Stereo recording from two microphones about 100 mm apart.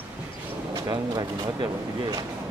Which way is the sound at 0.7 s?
40° right (ahead or behind).